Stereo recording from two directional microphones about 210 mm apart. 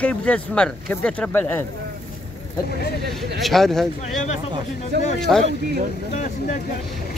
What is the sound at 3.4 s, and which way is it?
Speech, centre (ahead or behind).